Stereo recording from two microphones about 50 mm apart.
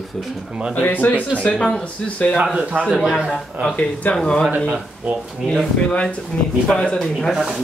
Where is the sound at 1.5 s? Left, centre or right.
Centre.